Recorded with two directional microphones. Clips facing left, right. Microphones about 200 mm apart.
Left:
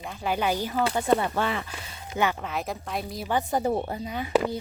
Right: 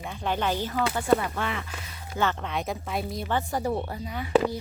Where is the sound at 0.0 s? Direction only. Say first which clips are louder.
Left 1 dB; 5° left (ahead or behind); by 1.3 s 20° left (ahead or behind).